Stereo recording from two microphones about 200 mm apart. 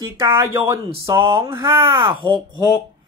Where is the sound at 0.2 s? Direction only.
20° right (ahead or behind).